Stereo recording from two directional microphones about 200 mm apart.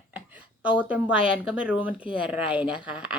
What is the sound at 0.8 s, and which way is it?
A woman's voice, 5° right (ahead or behind).